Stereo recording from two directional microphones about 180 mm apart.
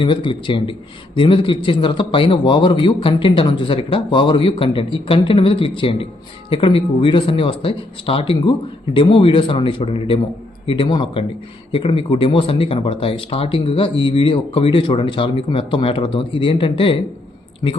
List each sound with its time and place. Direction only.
0.0 s a man's voice: 25° left (ahead or behind)